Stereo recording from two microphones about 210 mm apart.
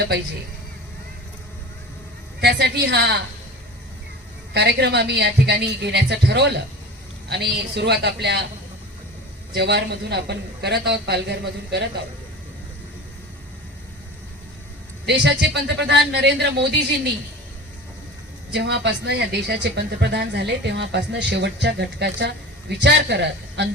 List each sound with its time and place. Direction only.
2.4 s speech: 50° right (ahead or behind)
4.5 s speech: 50° right (ahead or behind)
9.6 s speech: 55° right (ahead or behind)
15.0 s speech: 55° right (ahead or behind)
18.5 s speech: 55° right (ahead or behind)